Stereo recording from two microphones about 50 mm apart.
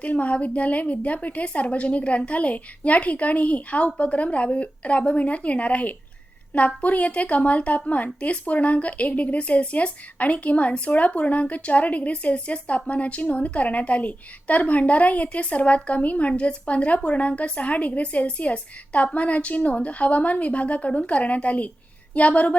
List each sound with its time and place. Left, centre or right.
0.0 s speech: left